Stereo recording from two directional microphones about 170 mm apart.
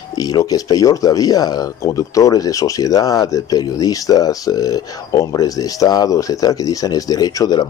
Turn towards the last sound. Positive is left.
turn(degrees=20)  # may be behind; listen again after turning